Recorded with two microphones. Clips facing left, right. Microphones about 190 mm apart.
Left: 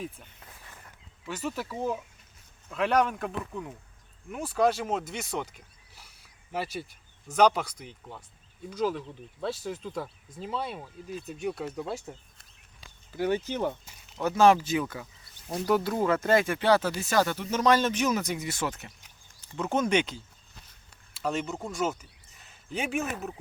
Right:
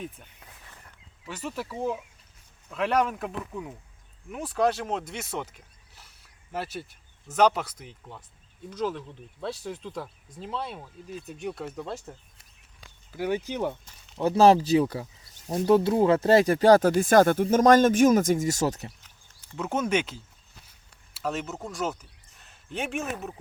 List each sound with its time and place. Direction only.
1.3 s speech: 5° left (ahead or behind)
13.1 s speech: 10° right (ahead or behind)
14.2 s speech: 30° right (ahead or behind)
19.5 s speech: 5° right (ahead or behind)
20.7 s a sound: 5° right (ahead or behind)